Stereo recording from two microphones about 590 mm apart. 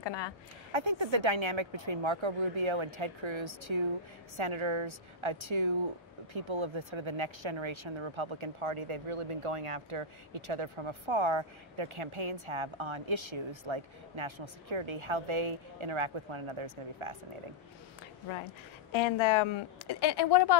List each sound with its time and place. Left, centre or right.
0.0 s a woman's voice: left
0.7 s speech: right
18.9 s a woman's voice: left